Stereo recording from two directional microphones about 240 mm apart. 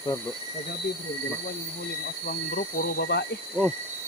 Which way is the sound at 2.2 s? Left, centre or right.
Left.